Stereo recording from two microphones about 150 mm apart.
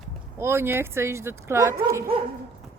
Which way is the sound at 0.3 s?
15° right (ahead or behind).